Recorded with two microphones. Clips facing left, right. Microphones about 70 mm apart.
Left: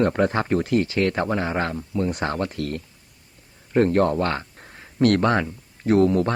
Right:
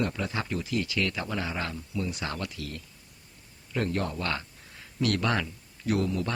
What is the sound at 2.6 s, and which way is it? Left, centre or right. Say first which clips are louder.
Speech: left 11 dB; left.